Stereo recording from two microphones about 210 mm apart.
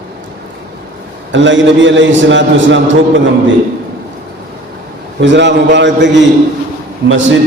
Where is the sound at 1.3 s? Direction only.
60° right (ahead or behind).